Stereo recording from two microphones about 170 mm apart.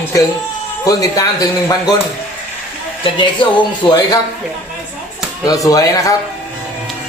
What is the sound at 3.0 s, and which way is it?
Speech, 30° left (ahead or behind).